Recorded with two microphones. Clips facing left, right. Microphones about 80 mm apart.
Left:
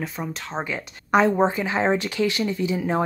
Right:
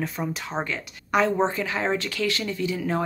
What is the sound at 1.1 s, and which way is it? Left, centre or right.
Speech, left.